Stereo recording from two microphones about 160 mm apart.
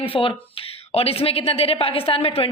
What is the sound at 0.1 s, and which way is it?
A man's voice, 35° left (ahead or behind).